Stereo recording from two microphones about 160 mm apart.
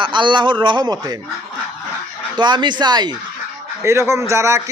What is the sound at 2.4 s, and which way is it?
Speech, 25° right (ahead or behind).